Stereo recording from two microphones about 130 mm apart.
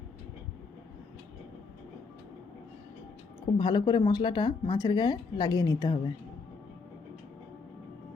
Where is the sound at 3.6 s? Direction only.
35° left (ahead or behind).